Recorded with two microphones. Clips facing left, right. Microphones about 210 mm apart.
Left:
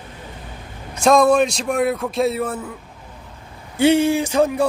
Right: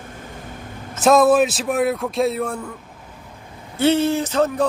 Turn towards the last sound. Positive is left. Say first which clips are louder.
# left 2 dB
turn(degrees=10)  # may be behind; listen again after turning